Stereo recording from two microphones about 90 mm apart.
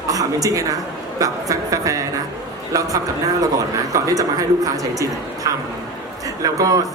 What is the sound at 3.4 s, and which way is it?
A man's voice, 40° right (ahead or behind).